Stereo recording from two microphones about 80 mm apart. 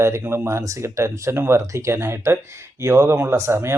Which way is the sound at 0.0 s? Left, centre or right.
Right.